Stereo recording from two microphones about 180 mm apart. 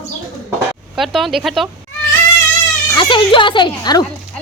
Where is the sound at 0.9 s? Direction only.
Centre (ahead or behind).